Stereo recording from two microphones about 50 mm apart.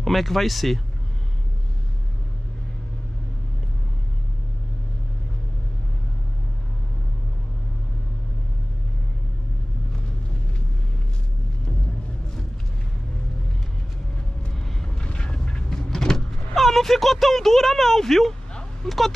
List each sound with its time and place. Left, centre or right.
0.0 s speech: centre
14.5 s vehicle: centre
15.0 s power windows: left
16.6 s speech: centre